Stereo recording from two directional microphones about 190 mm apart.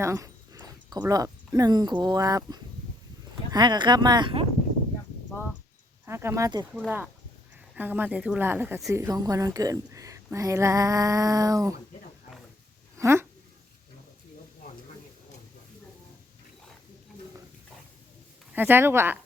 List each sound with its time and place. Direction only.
0.0 s speech: 15° right (ahead or behind)
6.1 s female singing: 15° right (ahead or behind)
7.8 s female singing: 10° right (ahead or behind)
13.0 s speech: 15° right (ahead or behind)
18.5 s female singing: 10° right (ahead or behind)